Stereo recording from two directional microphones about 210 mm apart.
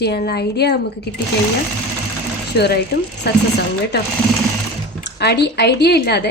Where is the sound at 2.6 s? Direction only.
50° left (ahead or behind).